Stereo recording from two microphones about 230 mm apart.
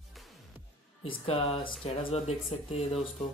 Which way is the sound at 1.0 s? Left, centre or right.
Left.